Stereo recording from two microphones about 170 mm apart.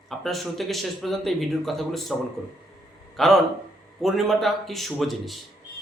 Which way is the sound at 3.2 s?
Centre (ahead or behind).